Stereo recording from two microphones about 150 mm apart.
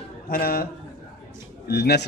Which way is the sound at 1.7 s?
90° left.